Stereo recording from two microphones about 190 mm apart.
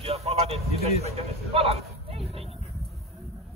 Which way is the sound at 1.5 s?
30° right (ahead or behind).